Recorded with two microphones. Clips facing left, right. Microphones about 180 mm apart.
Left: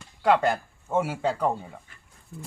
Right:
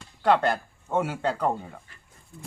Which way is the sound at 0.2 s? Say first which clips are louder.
Even; 10° left (ahead or behind).